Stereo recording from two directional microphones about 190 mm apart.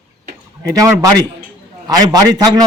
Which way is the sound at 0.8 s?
20° right (ahead or behind).